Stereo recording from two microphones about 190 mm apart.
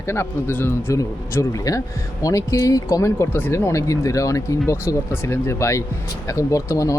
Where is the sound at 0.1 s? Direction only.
10° left (ahead or behind).